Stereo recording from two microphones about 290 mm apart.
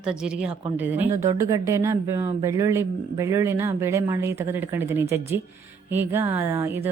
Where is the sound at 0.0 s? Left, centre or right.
Centre.